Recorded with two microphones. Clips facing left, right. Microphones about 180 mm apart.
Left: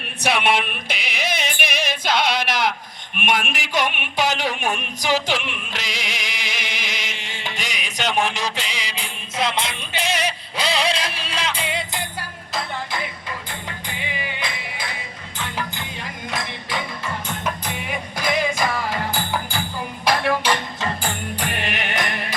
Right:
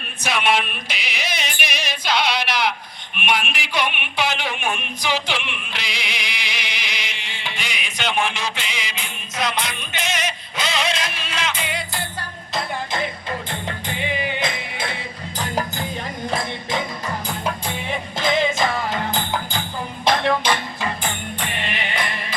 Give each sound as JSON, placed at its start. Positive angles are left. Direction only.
{"t": 0.2, "sound": "music", "side_deg": 60}
{"t": 3.2, "sound": "a sound", "side_deg": 45}
{"t": 13.5, "sound": "music", "side_deg": -25}
{"t": 15.4, "sound": "music", "side_deg": -40}
{"t": 17.2, "sound": "music", "side_deg": -30}
{"t": 21.1, "sound": "music", "side_deg": 35}